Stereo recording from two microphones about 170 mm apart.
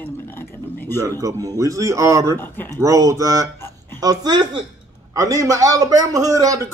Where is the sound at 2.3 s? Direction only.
10° left (ahead or behind).